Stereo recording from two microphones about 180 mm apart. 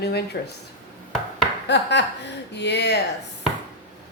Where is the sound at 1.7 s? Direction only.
75° left (ahead or behind).